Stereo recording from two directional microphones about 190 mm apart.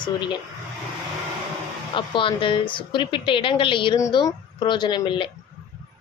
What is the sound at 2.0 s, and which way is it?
A woman's voice, 25° left (ahead or behind).